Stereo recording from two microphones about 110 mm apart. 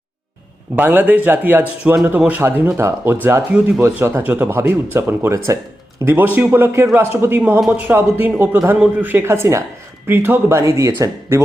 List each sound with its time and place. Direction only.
0.8 s speech: 15° right (ahead or behind)
10.6 s speech: 30° right (ahead or behind)